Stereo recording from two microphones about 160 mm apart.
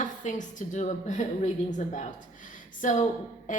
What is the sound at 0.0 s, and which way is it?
A woman's voice, 50° left (ahead or behind).